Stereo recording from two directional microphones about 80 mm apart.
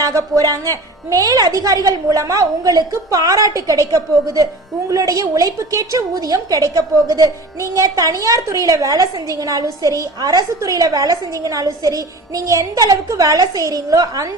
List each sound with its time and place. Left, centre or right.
0.0 s a woman's voice: right